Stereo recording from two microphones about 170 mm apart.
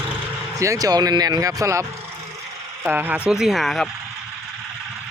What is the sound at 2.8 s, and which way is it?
Speech, 10° right (ahead or behind).